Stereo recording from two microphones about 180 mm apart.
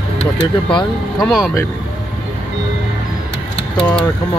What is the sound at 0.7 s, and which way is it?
Speech, 25° left (ahead or behind).